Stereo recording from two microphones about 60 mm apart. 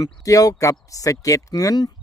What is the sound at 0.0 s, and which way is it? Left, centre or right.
Speech, left.